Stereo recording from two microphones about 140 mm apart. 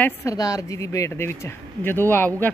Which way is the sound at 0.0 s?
20° left (ahead or behind).